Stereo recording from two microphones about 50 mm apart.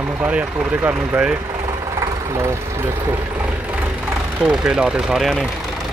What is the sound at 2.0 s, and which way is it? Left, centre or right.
Engine, right.